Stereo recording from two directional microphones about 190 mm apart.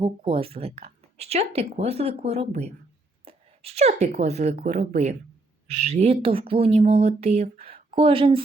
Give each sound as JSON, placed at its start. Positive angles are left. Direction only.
{"t": 0.0, "sound": "a woman's voice", "side_deg": -30}